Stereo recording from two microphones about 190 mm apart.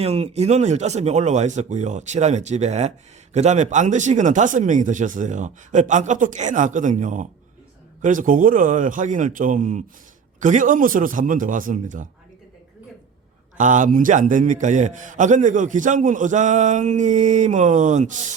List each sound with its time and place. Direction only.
0.0 s a man's voice: 30° right (ahead or behind)
13.6 s a man's voice: 40° right (ahead or behind)